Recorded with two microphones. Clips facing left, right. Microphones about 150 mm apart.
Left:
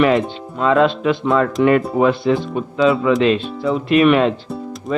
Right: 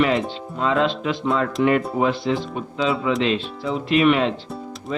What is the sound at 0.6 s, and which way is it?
Speech, 55° left (ahead or behind).